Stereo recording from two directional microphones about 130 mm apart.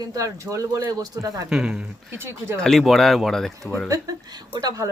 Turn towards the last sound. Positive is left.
turn(degrees=-30)  # may be behind; listen again after turning